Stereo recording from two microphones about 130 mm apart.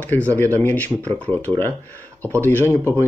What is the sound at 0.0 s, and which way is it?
Speech, 15° left (ahead or behind).